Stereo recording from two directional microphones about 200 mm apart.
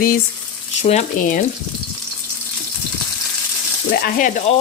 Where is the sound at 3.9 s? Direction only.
45° left (ahead or behind).